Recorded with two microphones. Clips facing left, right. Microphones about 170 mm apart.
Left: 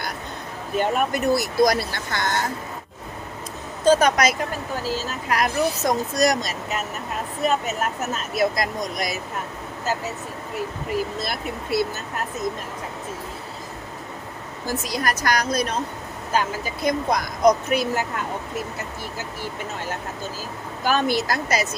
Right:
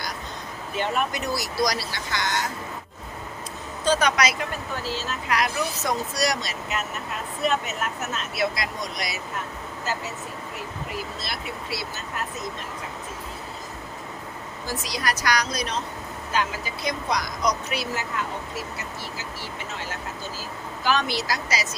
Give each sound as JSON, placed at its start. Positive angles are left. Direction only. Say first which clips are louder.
{"t": 0.8, "sound": "speech", "louder": "left 4 dB", "side_deg": 50}
{"t": 3.8, "sound": "speech", "louder": "left 5 dB", "side_deg": 45}
{"t": 11.2, "sound": "speech", "louder": "left 5 dB", "side_deg": 50}
{"t": 14.7, "sound": "speech", "louder": "left 4 dB", "side_deg": 50}
{"t": 20.8, "sound": "speech", "louder": "left 4 dB", "side_deg": 50}